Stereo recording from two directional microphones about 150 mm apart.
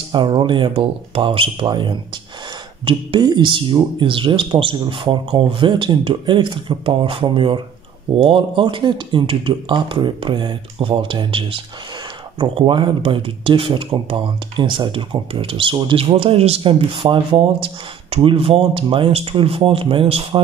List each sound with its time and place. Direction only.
0.1 s speech: 30° right (ahead or behind)